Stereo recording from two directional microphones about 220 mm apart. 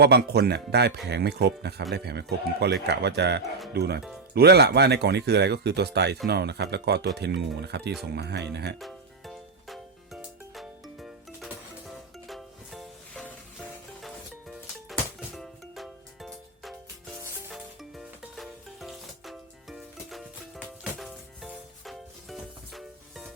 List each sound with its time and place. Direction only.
0.0 s speech: 45° right (ahead or behind)
8.8 s music: centre (ahead or behind)